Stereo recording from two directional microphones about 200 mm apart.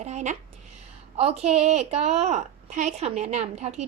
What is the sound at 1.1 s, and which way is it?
A woman's voice, 30° right (ahead or behind).